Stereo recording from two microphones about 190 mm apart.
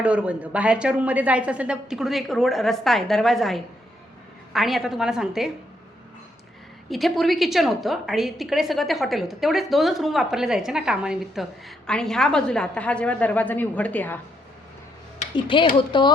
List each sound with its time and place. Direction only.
0.0 s a woman's voice: 5° right (ahead or behind)
6.9 s a woman's voice: centre (ahead or behind)
15.2 s speech: 25° left (ahead or behind)